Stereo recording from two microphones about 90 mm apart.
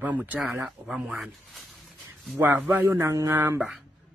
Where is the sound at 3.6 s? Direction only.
5° right (ahead or behind).